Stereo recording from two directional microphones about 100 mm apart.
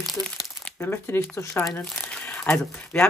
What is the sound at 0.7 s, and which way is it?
Speech, 25° left (ahead or behind).